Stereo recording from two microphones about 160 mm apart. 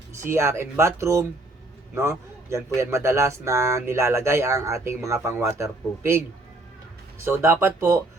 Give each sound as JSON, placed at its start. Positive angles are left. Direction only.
{"t": 0.3, "sound": "speech", "side_deg": -15}
{"t": 7.3, "sound": "speech", "side_deg": -15}